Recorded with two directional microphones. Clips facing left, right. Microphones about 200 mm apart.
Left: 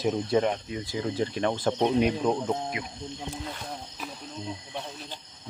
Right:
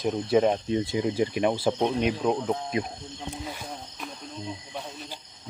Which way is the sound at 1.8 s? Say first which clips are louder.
Left 2 dB; 5° left (ahead or behind).